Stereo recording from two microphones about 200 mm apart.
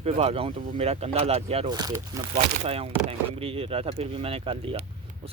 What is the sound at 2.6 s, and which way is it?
Speech, 30° right (ahead or behind).